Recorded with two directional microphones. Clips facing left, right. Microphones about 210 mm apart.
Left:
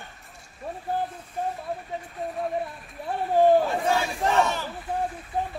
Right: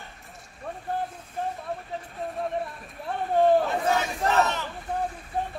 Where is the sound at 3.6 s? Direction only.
5° left (ahead or behind).